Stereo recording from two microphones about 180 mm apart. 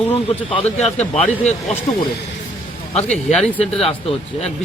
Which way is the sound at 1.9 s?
35° left (ahead or behind).